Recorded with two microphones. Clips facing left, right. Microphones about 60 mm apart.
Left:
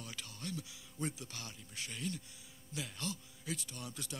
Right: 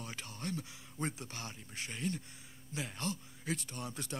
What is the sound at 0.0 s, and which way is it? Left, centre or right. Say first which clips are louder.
Speech: right 4 dB; right.